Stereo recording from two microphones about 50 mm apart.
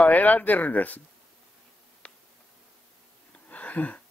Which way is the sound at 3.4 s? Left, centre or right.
Left.